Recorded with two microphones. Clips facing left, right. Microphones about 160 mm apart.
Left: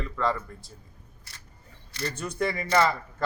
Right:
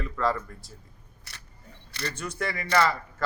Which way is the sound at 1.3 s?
70° right (ahead or behind).